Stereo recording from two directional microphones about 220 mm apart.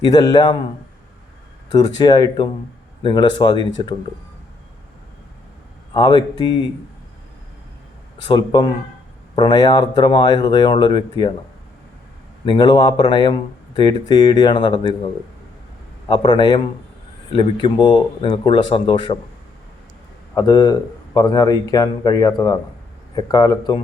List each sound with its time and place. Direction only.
0.0 s speech: 15° left (ahead or behind)
2.0 s a man's voice: 20° left (ahead or behind)
5.9 s a man's voice: 20° left (ahead or behind)
8.3 s a man's voice: 20° left (ahead or behind)
12.5 s a man's voice: 20° left (ahead or behind)
20.3 s speech: 20° left (ahead or behind)